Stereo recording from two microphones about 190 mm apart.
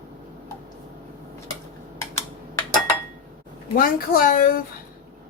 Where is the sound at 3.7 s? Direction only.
50° left (ahead or behind).